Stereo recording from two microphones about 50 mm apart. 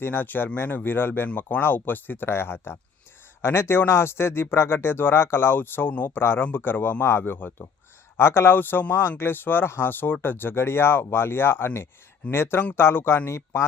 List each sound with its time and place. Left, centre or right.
0.0 s speech: left